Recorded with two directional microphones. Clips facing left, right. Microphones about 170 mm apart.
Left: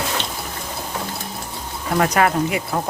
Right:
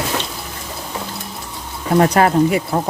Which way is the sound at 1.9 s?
30° right (ahead or behind).